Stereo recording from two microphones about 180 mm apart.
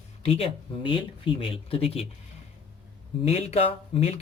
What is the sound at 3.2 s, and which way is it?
Speech, 35° left (ahead or behind).